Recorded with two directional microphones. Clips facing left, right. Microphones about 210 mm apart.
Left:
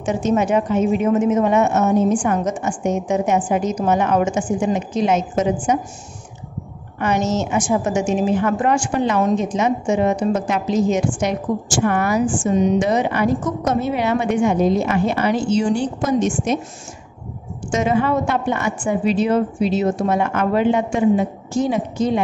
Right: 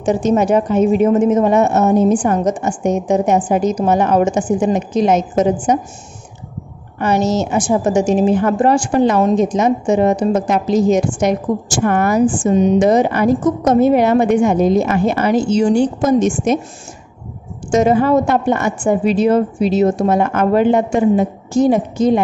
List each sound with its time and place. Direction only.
0.0 s a woman's voice: 35° right (ahead or behind)
7.0 s a woman's voice: 35° right (ahead or behind)
17.6 s a woman's voice: 40° right (ahead or behind)